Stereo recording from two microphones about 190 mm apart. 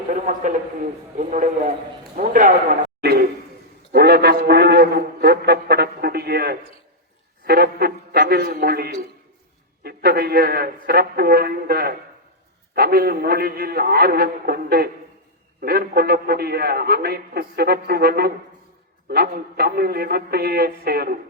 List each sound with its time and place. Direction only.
0.1 s a sound: 45° right (ahead or behind)
2.1 s speech: 45° right (ahead or behind)
3.9 s a man's voice: 55° right (ahead or behind)